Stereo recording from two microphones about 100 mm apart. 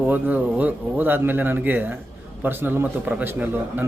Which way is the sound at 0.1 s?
15° right (ahead or behind).